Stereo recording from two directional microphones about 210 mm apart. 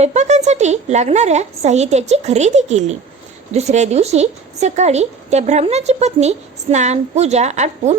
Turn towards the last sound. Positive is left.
turn(degrees=-35)  # may be behind; listen again after turning